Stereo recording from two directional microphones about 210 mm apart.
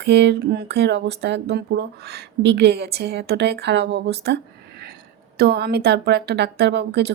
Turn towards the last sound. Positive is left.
turn(degrees=-55)  # may be behind; listen again after turning